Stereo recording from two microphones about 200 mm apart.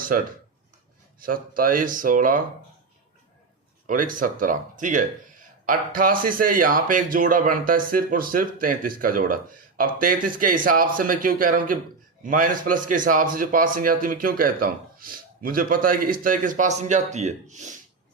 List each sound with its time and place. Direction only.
1.2 s speech: 45° right (ahead or behind)
3.8 s speech: 45° right (ahead or behind)